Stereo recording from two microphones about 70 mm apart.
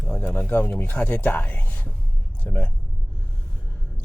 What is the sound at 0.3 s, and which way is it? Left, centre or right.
Speech, left.